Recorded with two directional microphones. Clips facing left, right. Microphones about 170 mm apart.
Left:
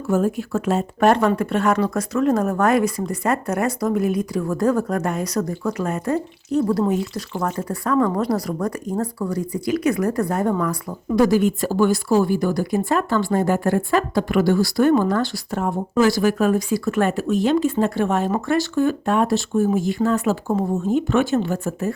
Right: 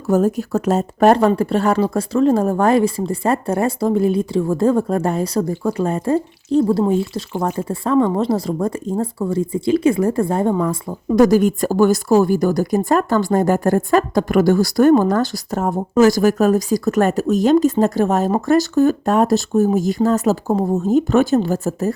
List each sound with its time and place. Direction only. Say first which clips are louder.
0.1 s speech: right 4 dB; 40° right (ahead or behind); by 10.8 s 25° right (ahead or behind)
11.1 s speech: right 4 dB; 45° right (ahead or behind)